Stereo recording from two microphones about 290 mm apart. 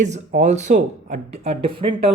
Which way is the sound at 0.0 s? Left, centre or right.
Right.